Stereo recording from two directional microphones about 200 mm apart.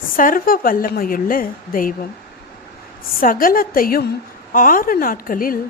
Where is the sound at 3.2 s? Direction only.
45° left (ahead or behind).